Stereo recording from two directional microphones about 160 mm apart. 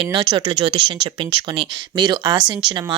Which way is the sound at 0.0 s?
35° right (ahead or behind).